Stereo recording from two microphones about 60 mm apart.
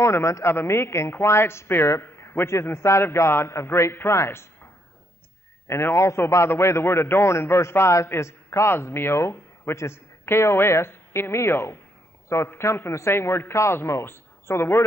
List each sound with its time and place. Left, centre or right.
0.0 s a man's voice: left
5.7 s a man's voice: left